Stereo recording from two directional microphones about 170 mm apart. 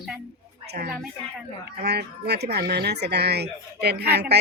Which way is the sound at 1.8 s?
70° right (ahead or behind).